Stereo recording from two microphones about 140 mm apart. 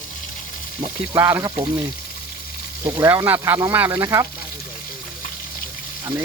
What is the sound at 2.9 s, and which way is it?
Speech, 25° right (ahead or behind).